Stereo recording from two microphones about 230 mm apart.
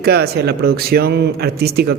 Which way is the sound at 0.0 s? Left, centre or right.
Right.